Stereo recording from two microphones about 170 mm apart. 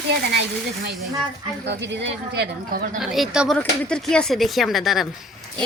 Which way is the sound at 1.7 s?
80° right.